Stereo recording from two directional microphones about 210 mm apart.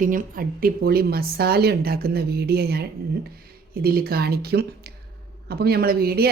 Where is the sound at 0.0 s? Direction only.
40° right (ahead or behind).